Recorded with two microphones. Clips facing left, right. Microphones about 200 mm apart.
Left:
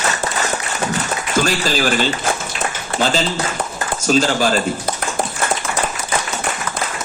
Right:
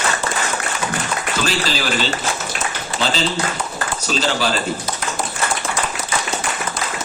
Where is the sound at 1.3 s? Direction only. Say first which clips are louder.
Left 5 dB; 45° left (ahead or behind).